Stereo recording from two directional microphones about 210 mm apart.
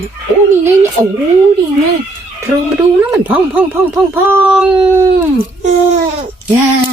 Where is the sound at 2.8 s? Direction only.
10° right (ahead or behind).